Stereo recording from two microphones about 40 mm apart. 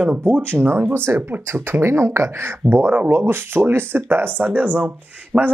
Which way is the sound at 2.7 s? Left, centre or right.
Right.